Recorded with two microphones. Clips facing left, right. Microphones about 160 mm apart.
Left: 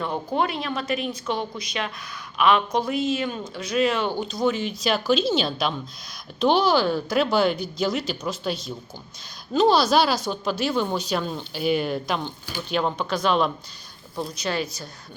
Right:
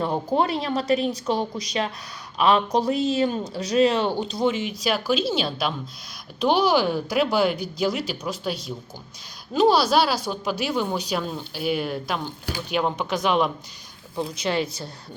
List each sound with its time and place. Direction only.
0.0 s a woman's voice: 35° right (ahead or behind)